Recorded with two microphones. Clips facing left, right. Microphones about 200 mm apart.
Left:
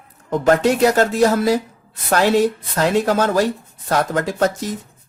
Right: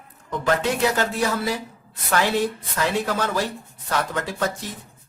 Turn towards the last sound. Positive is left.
turn(degrees=40)  # may be behind; listen again after turning